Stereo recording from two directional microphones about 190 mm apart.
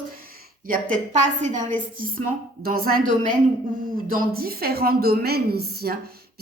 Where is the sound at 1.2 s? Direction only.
40° right (ahead or behind).